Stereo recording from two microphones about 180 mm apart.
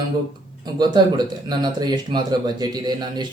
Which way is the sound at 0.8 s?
25° right (ahead or behind).